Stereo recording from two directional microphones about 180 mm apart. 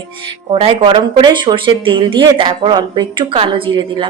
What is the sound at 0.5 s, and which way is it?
Speech, 30° right (ahead or behind).